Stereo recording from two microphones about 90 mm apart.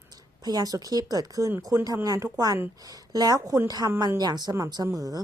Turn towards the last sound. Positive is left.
turn(degrees=-40)  # may be behind; listen again after turning